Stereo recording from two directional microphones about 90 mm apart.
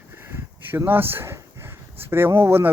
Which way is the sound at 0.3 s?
30° right (ahead or behind).